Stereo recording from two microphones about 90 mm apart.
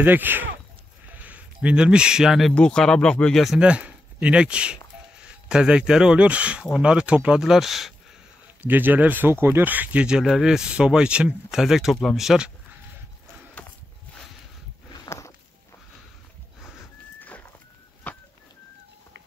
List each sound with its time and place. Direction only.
0.0 s speech: 20° right (ahead or behind); by 2.5 s 5° right (ahead or behind)
2.5 s speech: 10° left (ahead or behind)
3.5 s speech: 10° right (ahead or behind)
8.6 s speech: 20° right (ahead or behind); by 12.4 s 5° right (ahead or behind)
15.0 s walk: 35° left (ahead or behind)
17.2 s a sound: 20° left (ahead or behind)
18.1 s whistling: 15° left (ahead or behind)